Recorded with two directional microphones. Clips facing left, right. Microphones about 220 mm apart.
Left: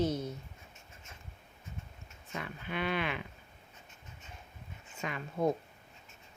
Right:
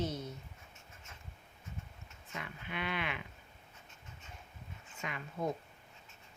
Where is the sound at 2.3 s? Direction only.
40° left (ahead or behind).